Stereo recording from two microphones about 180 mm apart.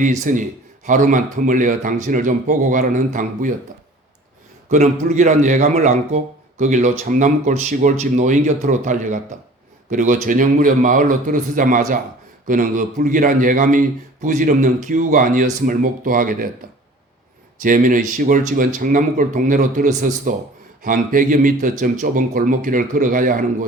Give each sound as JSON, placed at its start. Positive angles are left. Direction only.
{"t": 0.0, "sound": "a man's voice", "side_deg": -45}
{"t": 4.7, "sound": "a man's voice", "side_deg": -45}
{"t": 17.6, "sound": "a man's voice", "side_deg": -50}